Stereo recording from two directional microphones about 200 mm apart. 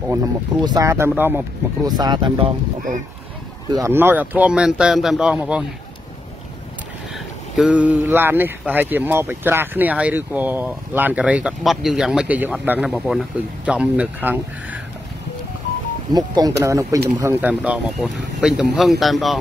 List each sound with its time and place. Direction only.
0.1 s speech: 15° right (ahead or behind)
1.9 s speech: 20° right (ahead or behind)
3.7 s speech: 15° right (ahead or behind)
7.5 s speech: 5° right (ahead or behind)
16.1 s speech: 20° right (ahead or behind); by 19.4 s centre (ahead or behind)